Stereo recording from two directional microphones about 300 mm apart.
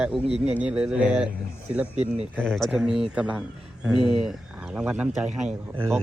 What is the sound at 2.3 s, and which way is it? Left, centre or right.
Speech, centre.